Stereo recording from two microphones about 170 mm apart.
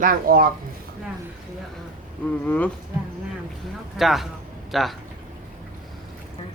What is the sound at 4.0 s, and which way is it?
Speech, centre (ahead or behind).